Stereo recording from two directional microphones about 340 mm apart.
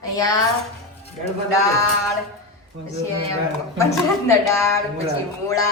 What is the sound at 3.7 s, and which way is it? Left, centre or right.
A man's voice, centre.